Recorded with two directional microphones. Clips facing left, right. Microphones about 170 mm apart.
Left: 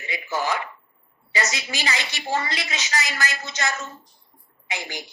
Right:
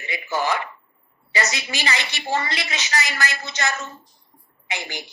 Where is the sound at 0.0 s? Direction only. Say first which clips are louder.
Right 2 dB; 65° right (ahead or behind).